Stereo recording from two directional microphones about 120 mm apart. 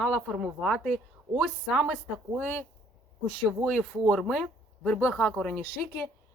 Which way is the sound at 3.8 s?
Centre (ahead or behind).